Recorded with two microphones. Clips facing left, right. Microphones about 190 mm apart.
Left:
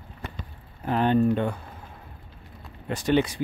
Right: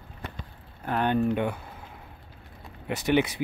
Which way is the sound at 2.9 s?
10° right (ahead or behind).